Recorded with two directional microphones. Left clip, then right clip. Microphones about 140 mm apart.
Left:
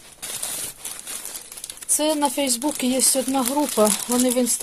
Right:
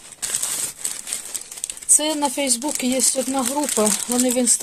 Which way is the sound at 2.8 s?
15° left (ahead or behind).